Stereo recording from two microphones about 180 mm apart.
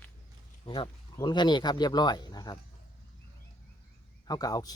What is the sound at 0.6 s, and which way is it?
Speech, 30° left (ahead or behind).